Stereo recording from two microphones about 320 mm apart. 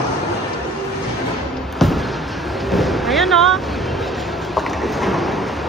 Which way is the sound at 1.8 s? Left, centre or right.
Centre.